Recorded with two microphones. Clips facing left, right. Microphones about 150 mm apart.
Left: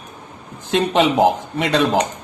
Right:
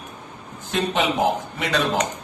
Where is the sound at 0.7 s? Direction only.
80° left.